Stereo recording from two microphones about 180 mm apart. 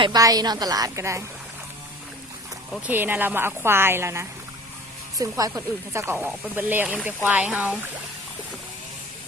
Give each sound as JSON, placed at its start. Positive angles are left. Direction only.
{"t": 0.0, "sound": "a woman's voice", "side_deg": -20}
{"t": 2.7, "sound": "speech", "side_deg": -10}